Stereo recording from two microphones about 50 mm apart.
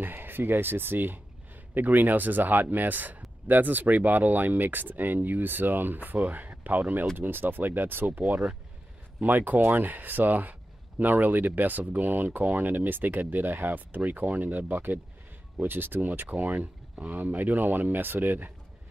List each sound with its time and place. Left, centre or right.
0.0 s speech: right
8.2 s speech: right